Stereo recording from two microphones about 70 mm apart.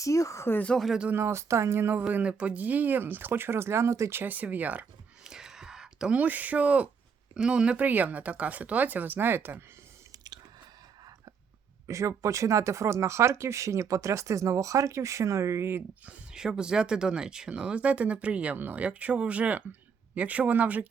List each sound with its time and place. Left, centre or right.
0.0 s speech: left
0.7 s speech: centre
1.1 s speech: right
2.0 s speech: centre; by 4.2 s right
4.2 s speech: right
5.2 s a sound: centre
6.1 s speech: right
10.1 s chewing: right
11.9 s speech: right
16.0 s speech: centre